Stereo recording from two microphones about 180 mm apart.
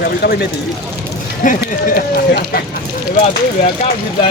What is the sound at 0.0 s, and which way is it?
Speech, 60° left (ahead or behind).